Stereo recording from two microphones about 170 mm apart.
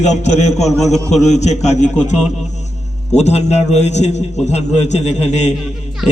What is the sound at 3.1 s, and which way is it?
A man's voice, 40° left (ahead or behind).